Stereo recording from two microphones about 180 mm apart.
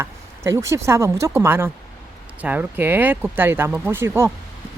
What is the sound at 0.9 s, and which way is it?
Speech, 15° right (ahead or behind).